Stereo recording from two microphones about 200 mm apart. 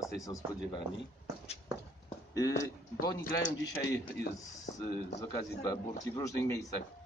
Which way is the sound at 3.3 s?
65° left (ahead or behind).